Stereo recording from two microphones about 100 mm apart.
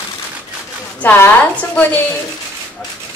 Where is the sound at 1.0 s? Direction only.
15° left (ahead or behind).